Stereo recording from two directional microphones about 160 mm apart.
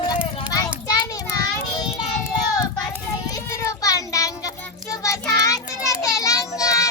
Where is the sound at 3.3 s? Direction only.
20° left (ahead or behind).